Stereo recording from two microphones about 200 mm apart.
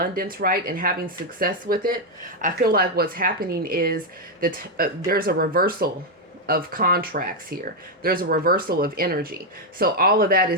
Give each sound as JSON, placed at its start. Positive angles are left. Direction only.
{"t": 0.0, "sound": "speech", "side_deg": -45}